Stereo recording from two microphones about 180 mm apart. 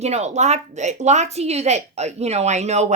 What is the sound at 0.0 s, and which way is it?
Speech, 35° right (ahead or behind).